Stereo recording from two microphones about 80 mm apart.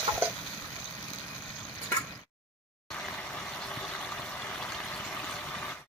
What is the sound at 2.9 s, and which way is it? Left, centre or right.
Vehicle, centre.